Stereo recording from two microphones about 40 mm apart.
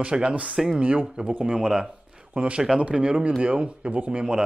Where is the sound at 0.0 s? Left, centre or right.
Right.